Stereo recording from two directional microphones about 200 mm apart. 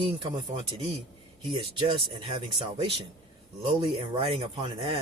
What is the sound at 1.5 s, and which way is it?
Speech, 25° right (ahead or behind).